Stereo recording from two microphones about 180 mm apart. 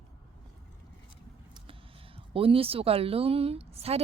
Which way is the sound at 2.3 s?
30° right (ahead or behind).